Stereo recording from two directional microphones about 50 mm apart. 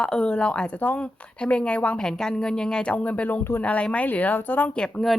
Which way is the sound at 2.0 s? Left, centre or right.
Centre.